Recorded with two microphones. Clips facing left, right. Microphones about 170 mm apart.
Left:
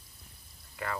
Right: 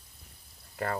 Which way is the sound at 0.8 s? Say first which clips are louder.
Right 4 dB; 40° right (ahead or behind).